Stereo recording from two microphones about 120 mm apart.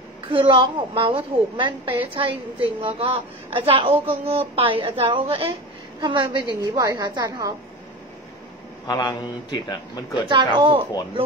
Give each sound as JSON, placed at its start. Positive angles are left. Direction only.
{"t": 0.3, "sound": "a woman's voice", "side_deg": -45}
{"t": 8.8, "sound": "a man's voice", "side_deg": 35}
{"t": 10.2, "sound": "a woman's voice", "side_deg": -40}